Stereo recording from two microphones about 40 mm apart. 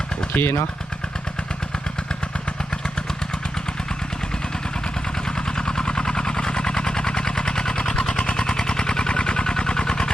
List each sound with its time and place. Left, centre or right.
0.3 s speech: left
5.5 s vehicle: centre